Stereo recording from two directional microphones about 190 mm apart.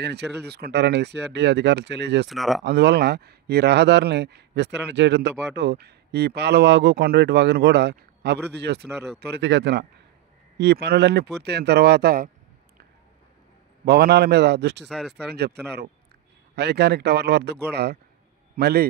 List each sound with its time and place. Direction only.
0.0 s speech: 60° right (ahead or behind)
2.2 s speech: centre (ahead or behind)
2.6 s speech: 60° right (ahead or behind)
9.2 s speech: 75° right (ahead or behind); by 12.3 s 55° right (ahead or behind)
13.8 s speech: 60° right (ahead or behind)
14.9 s speech: centre (ahead or behind)
15.3 s speech: 60° right (ahead or behind)